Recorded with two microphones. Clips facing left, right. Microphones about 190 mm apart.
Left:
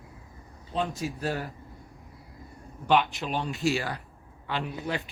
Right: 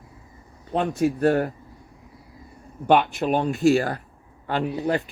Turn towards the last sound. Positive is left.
turn(degrees=-40)  # may be behind; listen again after turning